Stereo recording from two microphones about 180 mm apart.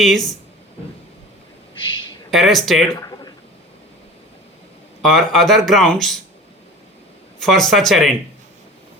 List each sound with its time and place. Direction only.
0.0 s speech: centre (ahead or behind)
2.3 s speech: centre (ahead or behind)
2.9 s a sound: 20° left (ahead or behind)
5.0 s speech: centre (ahead or behind)
7.4 s speech: centre (ahead or behind)